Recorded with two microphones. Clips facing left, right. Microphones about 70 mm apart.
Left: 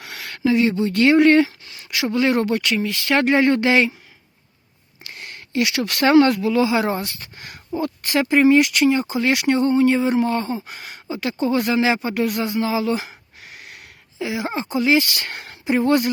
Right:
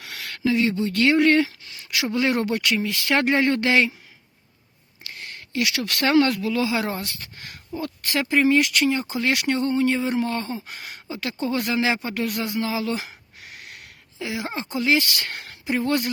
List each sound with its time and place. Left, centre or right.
0.0 s speech: left
1.9 s speech: centre
5.0 s speech: left; by 15.0 s centre
15.2 s speech: left